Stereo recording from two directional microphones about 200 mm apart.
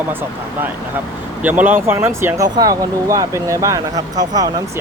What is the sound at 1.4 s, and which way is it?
Speech, 10° right (ahead or behind).